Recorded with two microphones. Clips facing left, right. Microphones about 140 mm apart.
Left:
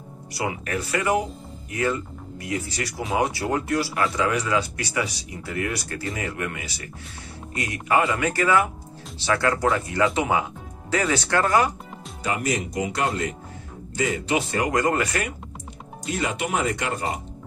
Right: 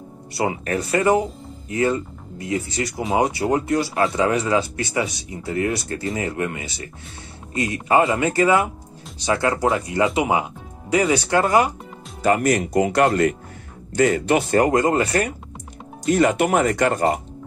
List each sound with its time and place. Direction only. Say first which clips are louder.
0.3 s speech: right 5 dB; 30° right (ahead or behind)
12.2 s speech: right 8 dB; 55° right (ahead or behind)
14.7 s speech: right 4 dB; 25° right (ahead or behind)
16.1 s speech: right 9 dB; 55° right (ahead or behind)